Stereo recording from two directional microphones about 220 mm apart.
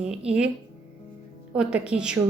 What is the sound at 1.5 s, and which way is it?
Speech, 5° right (ahead or behind).